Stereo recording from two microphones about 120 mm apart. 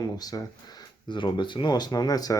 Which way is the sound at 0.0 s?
30° left (ahead or behind).